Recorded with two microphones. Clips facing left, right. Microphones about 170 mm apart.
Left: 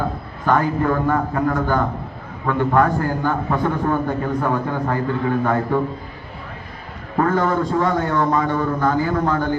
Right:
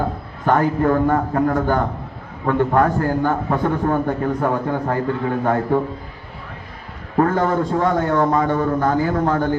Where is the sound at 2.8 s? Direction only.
50° right (ahead or behind).